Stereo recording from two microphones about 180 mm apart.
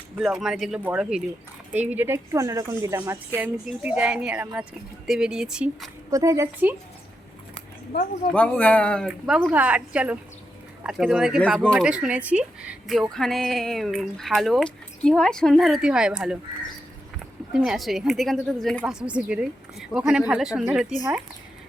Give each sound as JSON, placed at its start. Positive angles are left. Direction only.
{"t": 0.2, "sound": "a woman's voice", "side_deg": 0}
{"t": 6.1, "sound": "a woman's voice", "side_deg": -20}
{"t": 8.3, "sound": "a woman's voice", "side_deg": 5}
{"t": 17.5, "sound": "a woman's voice", "side_deg": -5}